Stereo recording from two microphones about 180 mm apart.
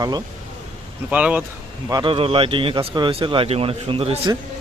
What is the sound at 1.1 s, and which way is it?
Speech, 5° right (ahead or behind).